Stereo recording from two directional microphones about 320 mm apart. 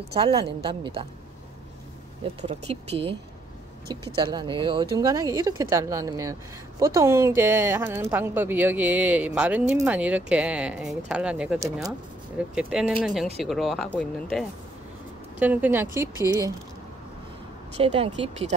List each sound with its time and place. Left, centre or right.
0.1 s a woman's voice: centre
2.4 s a woman's voice: centre
15.3 s speech: centre
17.7 s speech: centre